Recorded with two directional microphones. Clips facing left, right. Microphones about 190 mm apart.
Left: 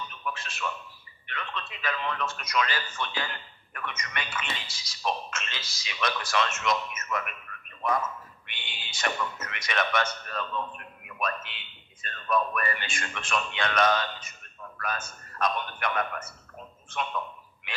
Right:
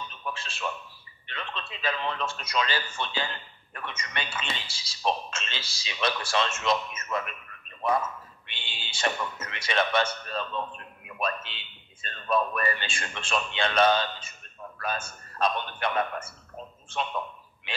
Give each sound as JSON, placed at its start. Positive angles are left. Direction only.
{"t": 0.1, "sound": "a sound", "side_deg": -30}
{"t": 1.2, "sound": "a man's voice", "side_deg": -30}
{"t": 8.5, "sound": "a man's voice", "side_deg": -30}